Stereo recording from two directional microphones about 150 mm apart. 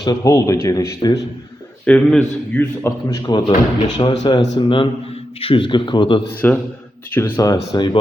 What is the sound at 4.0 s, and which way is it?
A man's voice, 30° left (ahead or behind).